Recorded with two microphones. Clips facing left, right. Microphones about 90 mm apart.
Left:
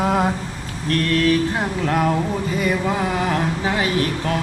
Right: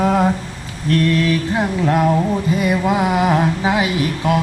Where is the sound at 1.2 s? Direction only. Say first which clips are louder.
Even; 5° right (ahead or behind).